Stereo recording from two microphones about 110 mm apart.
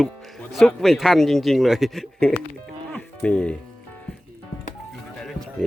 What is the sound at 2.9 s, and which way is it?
Music, 10° left (ahead or behind).